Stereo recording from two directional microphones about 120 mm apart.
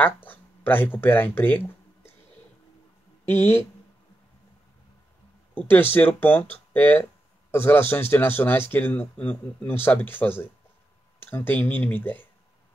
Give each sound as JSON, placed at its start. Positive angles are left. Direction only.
{"t": 0.0, "sound": "speech", "side_deg": 15}
{"t": 3.3, "sound": "speech", "side_deg": 20}
{"t": 5.5, "sound": "speech", "side_deg": 15}